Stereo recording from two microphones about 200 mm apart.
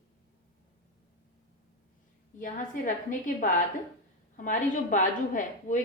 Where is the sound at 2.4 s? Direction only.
40° left (ahead or behind).